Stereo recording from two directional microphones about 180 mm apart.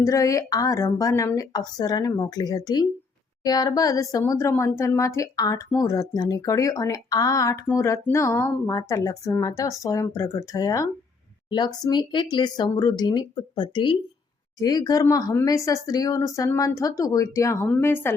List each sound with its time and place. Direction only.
0.0 s speech: 20° left (ahead or behind)